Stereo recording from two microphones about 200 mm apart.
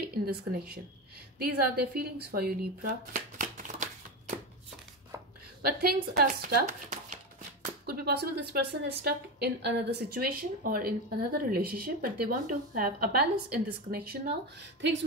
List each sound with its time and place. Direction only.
0.0 s speech: 50° right (ahead or behind)
5.7 s speech: 50° right (ahead or behind)